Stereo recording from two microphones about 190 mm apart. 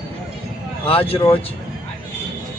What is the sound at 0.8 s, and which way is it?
Speech, 30° left (ahead or behind).